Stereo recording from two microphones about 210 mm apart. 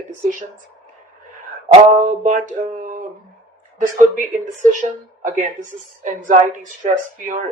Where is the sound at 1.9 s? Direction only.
35° right (ahead or behind).